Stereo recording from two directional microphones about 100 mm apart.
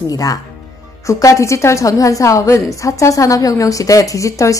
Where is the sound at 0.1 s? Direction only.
35° left (ahead or behind).